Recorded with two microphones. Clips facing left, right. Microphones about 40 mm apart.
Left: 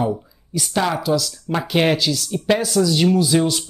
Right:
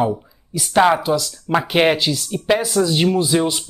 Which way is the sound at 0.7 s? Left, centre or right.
Right.